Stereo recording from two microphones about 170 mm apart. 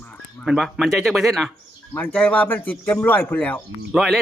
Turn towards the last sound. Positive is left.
turn(degrees=0)  # may be behind; listen again after turning